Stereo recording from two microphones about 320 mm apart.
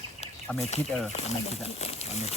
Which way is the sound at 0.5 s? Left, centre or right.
Centre.